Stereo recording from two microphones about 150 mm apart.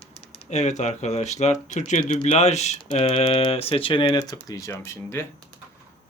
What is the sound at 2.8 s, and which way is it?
Speech, 35° left (ahead or behind).